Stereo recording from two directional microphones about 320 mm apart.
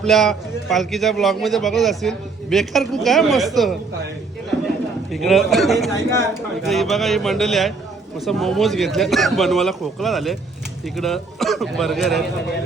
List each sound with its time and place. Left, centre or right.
0.0 s a man's voice: centre
5.1 s a man's voice: centre